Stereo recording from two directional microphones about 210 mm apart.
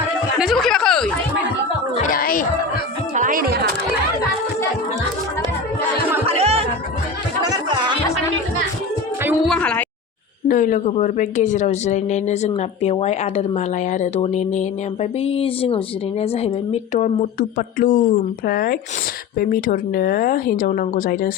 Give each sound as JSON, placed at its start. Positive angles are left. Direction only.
{"t": 0.3, "sound": "a sound", "side_deg": 0}
{"t": 2.0, "sound": "a sound", "side_deg": 40}
{"t": 3.2, "sound": "music", "side_deg": -40}
{"t": 6.2, "sound": "music", "side_deg": -30}
{"t": 9.2, "sound": "music", "side_deg": 0}
{"t": 10.5, "sound": "a woman's voice", "side_deg": 40}